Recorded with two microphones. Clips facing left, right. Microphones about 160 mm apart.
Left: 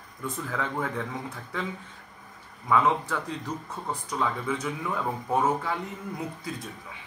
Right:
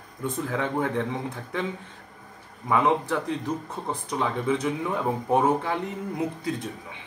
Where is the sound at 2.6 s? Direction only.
25° right (ahead or behind).